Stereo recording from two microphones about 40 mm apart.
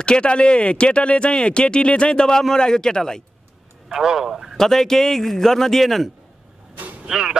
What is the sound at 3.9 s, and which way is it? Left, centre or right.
Speech, centre.